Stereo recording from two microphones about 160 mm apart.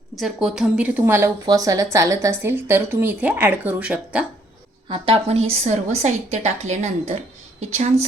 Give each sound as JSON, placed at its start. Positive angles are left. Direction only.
{"t": 0.2, "sound": "a woman's voice", "side_deg": 0}
{"t": 4.9, "sound": "a woman's voice", "side_deg": -35}